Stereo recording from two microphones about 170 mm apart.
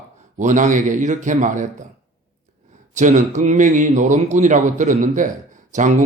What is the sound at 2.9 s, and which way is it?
A man's voice, 45° right (ahead or behind).